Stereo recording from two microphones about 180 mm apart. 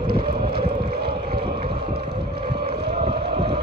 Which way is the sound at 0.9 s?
60° right (ahead or behind).